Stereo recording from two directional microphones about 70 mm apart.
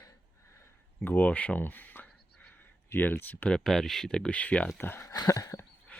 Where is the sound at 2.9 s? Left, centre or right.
Left.